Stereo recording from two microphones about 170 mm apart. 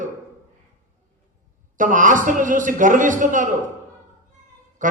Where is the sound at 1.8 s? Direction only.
50° right (ahead or behind).